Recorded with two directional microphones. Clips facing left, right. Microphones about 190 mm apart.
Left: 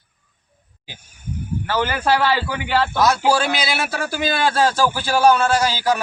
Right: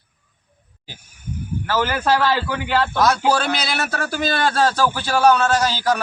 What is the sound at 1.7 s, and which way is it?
A man's voice, 15° left (ahead or behind).